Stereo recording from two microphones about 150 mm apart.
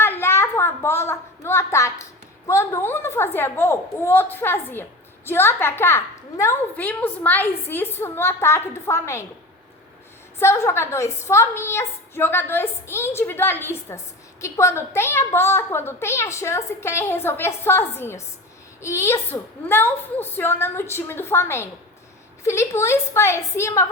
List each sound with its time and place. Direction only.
0.0 s a sound: 15° left (ahead or behind)
2.5 s a woman's voice: 20° left (ahead or behind)
10.4 s a woman's voice: 15° left (ahead or behind)